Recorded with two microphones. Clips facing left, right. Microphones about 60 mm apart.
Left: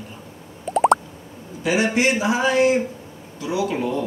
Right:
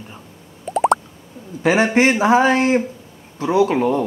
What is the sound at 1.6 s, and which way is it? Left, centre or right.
Speech, right.